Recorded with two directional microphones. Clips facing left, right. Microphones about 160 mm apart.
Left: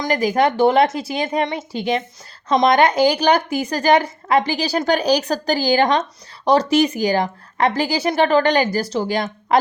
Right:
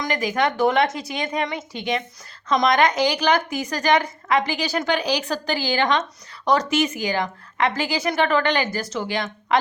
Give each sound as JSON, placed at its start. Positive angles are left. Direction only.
{"t": 0.0, "sound": "speech", "side_deg": 35}